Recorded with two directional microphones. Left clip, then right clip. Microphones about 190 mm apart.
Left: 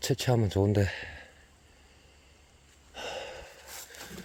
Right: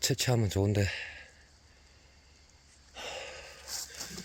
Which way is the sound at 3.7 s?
10° left (ahead or behind).